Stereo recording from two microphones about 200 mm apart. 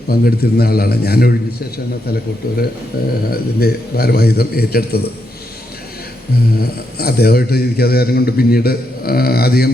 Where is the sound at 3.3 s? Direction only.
50° left (ahead or behind).